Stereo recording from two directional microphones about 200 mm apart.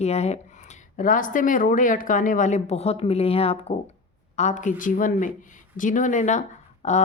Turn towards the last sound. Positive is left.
turn(degrees=35)  # may be behind; listen again after turning